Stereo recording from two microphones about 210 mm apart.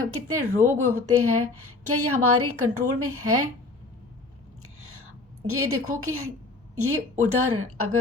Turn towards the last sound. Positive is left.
turn(degrees=-90)